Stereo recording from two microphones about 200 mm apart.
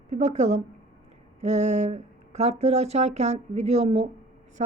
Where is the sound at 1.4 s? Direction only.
35° right (ahead or behind).